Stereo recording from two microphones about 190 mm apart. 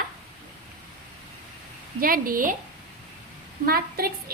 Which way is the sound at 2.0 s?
50° right (ahead or behind).